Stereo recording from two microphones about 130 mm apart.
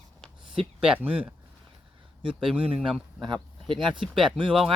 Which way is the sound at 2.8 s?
5° right (ahead or behind).